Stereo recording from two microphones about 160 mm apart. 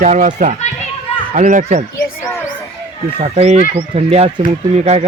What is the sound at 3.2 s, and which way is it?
Speech, 40° right (ahead or behind).